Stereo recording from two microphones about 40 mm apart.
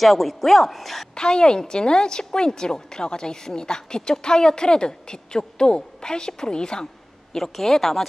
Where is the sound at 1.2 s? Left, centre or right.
Centre.